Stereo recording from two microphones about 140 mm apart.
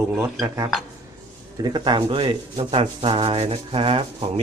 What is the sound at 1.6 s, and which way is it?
Speech, 30° right (ahead or behind).